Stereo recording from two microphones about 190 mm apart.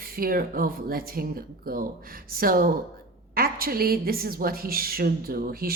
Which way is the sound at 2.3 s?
50° right (ahead or behind).